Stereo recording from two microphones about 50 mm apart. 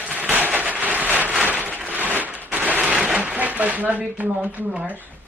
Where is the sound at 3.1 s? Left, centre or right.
Right.